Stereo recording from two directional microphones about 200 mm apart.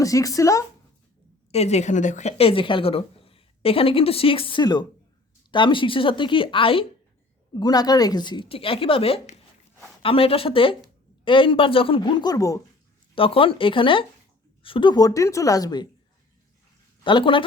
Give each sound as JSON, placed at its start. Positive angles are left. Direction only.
{"t": 0.0, "sound": "speech", "side_deg": 15}
{"t": 1.5, "sound": "a woman's voice", "side_deg": 35}
{"t": 13.1, "sound": "a woman's voice", "side_deg": 25}
{"t": 17.0, "sound": "speech", "side_deg": 25}